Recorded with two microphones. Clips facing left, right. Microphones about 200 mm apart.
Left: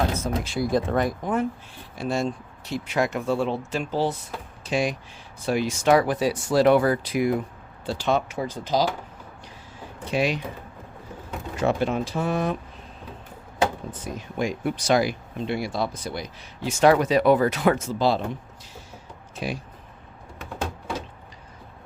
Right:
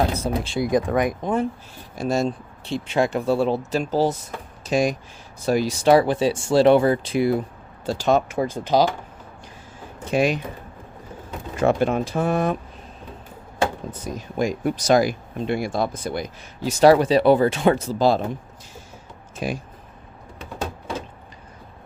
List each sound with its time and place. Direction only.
0.1 s speech: 35° right (ahead or behind); by 1.3 s 15° right (ahead or behind)
1.7 s speech: 40° right (ahead or behind)
2.6 s speech: 25° right (ahead or behind)
7.9 s speech: 45° right (ahead or behind)
10.1 s speech: 45° right (ahead or behind)
11.5 s speech: 50° right (ahead or behind)
14.0 s speech: 40° right (ahead or behind)
19.4 s speech: 45° right (ahead or behind)